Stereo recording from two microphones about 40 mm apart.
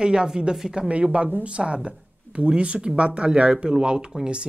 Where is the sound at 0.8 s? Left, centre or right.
Right.